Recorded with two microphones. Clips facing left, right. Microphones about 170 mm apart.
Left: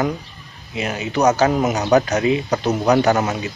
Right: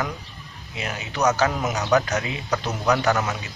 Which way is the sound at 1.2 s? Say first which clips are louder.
Left 6 dB; 30° left (ahead or behind).